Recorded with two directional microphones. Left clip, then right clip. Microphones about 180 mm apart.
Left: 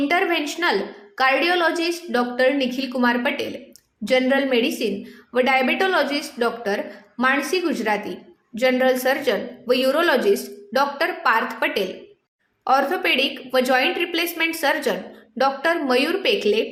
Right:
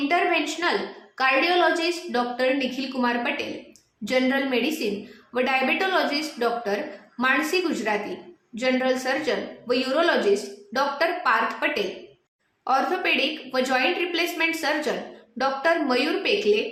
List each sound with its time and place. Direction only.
0.1 s speech: 30° left (ahead or behind)